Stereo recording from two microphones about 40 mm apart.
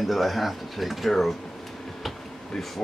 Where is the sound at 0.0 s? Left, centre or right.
Centre.